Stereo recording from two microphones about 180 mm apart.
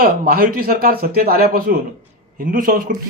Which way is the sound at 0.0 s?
55° right (ahead or behind).